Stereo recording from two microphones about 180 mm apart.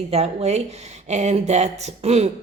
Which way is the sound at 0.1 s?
35° right (ahead or behind).